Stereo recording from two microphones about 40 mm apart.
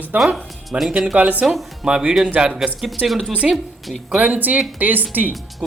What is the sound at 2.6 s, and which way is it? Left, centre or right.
Speech, centre.